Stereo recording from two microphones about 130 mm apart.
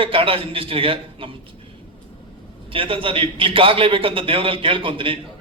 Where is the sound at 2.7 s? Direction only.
45° right (ahead or behind).